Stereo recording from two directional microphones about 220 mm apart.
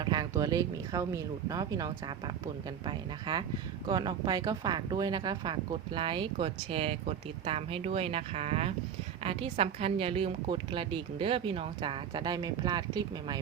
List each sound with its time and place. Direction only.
0.0 s speech: 20° right (ahead or behind)